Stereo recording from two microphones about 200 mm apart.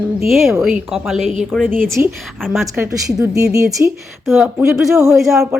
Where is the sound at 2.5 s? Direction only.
5° right (ahead or behind).